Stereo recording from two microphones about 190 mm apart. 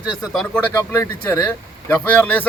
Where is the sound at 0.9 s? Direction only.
15° left (ahead or behind).